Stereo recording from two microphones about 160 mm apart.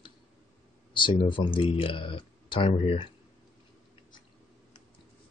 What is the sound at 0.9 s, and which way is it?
Speech, 30° left (ahead or behind).